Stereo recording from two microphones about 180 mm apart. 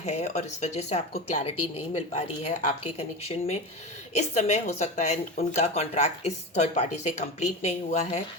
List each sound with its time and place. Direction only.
0.0 s a woman's voice: 40° left (ahead or behind)